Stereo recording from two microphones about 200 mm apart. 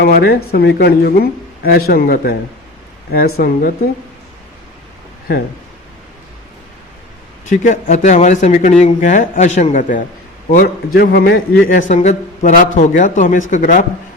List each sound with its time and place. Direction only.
0.0 s speech: 50° left (ahead or behind)
7.5 s a man's voice: 40° left (ahead or behind)
11.7 s a man's voice: 40° left (ahead or behind)